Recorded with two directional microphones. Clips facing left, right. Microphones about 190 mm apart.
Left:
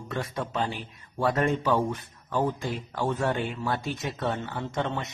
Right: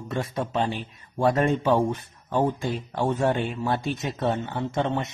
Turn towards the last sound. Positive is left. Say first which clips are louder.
# right 4 dB
turn(degrees=-25)  # may be behind; listen again after turning